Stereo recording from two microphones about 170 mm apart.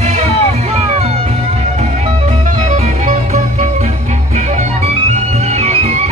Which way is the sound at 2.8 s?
40° right (ahead or behind).